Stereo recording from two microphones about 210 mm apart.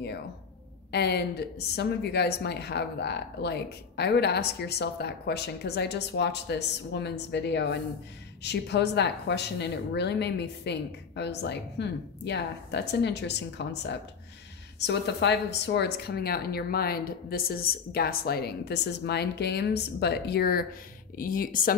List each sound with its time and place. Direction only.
0.9 s a woman's voice: 50° left (ahead or behind)